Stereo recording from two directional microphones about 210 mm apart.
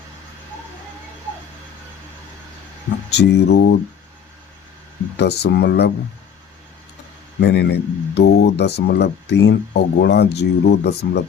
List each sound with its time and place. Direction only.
3.1 s speech: 55° left (ahead or behind)
5.1 s speech: 50° left (ahead or behind)
7.4 s speech: 50° left (ahead or behind)